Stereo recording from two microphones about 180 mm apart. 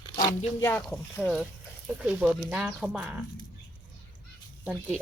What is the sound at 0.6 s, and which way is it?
Speech, 5° left (ahead or behind).